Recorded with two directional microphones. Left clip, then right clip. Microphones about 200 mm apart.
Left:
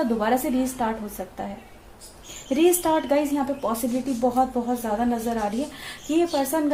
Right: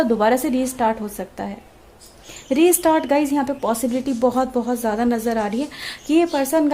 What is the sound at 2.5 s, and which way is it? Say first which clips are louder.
A woman's voice: right 4 dB; 45° right (ahead or behind).